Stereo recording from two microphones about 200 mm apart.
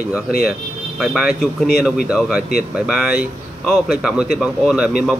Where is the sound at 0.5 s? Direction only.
Centre (ahead or behind).